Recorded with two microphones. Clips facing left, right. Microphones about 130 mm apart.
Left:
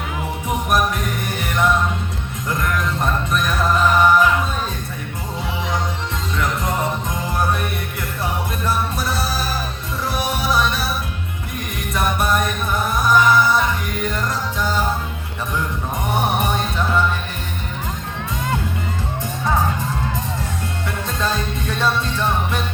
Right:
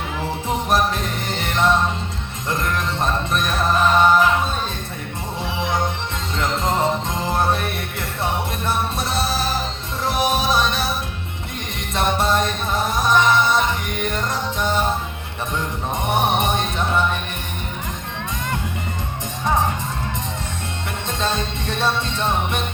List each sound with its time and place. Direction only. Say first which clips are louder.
0.4 s music: even; 30° right (ahead or behind)
6.3 s music: right 2 dB; 25° right (ahead or behind)
11.9 s music: right 1 dB; 25° right (ahead or behind)
16.0 s music: right 1 dB; 20° right (ahead or behind)
21.2 s music: even; 25° right (ahead or behind)